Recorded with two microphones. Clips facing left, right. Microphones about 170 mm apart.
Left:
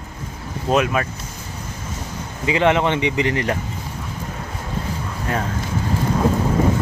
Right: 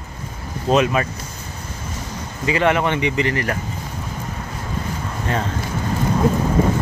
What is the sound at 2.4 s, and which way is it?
Speech, 20° left (ahead or behind).